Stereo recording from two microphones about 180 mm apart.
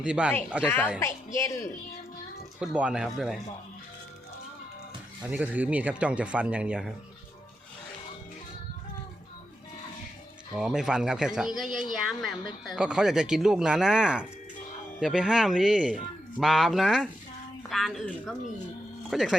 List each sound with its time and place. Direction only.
0.0 s speech: 5° right (ahead or behind)
0.9 s a woman's voice: 15° left (ahead or behind)
2.6 s speech: 5° right (ahead or behind)
5.2 s speech: 10° right (ahead or behind)
10.5 s speech: 5° right (ahead or behind)